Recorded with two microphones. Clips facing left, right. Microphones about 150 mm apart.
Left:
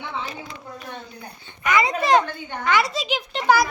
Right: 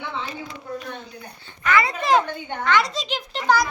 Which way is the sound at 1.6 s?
15° left (ahead or behind).